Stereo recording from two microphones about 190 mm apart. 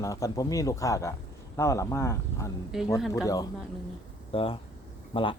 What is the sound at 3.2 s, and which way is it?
Speech, 20° left (ahead or behind).